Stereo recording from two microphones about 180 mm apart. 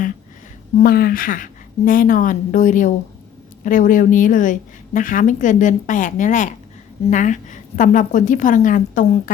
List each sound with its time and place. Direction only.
0.8 s a woman's voice: 55° left (ahead or behind)